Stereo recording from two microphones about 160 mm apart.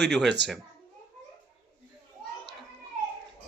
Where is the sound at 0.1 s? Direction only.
Centre (ahead or behind).